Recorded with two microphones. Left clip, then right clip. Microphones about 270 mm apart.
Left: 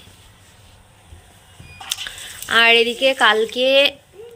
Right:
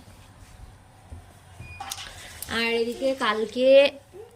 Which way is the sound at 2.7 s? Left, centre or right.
Centre.